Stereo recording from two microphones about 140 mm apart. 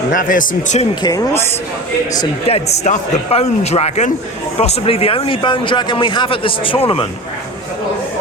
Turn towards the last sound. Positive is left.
turn(degrees=40)  # may be behind; listen again after turning